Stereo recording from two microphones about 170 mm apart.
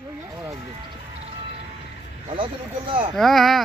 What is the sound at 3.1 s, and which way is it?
Speech, centre (ahead or behind).